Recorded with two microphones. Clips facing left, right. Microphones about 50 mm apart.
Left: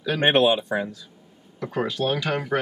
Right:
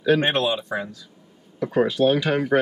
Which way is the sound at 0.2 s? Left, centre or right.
Centre.